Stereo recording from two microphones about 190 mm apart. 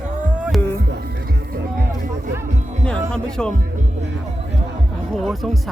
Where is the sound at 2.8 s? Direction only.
5° left (ahead or behind).